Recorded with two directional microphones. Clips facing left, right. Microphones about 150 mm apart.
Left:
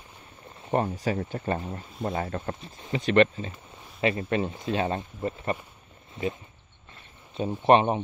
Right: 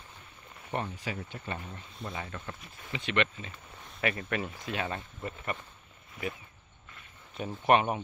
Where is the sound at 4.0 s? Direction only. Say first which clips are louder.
Left 7 dB; 25° left (ahead or behind).